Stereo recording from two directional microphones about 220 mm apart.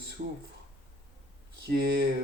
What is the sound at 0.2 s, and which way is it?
Speech, 40° right (ahead or behind).